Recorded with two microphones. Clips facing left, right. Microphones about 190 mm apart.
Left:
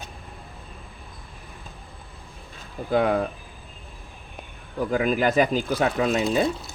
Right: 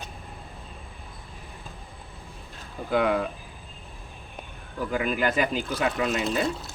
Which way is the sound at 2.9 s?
35° left (ahead or behind).